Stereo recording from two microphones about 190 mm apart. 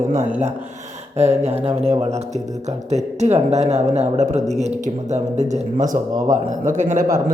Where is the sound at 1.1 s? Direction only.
35° right (ahead or behind).